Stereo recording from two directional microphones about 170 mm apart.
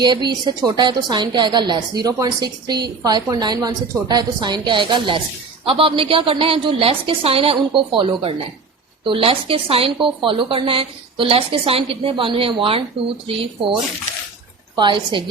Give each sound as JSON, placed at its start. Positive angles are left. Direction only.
{"t": 0.0, "sound": "a woman's voice", "side_deg": -25}
{"t": 14.8, "sound": "a woman's voice", "side_deg": -30}